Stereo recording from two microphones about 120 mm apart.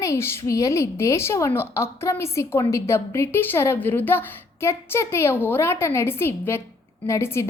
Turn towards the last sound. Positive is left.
turn(degrees=20)  # may be behind; listen again after turning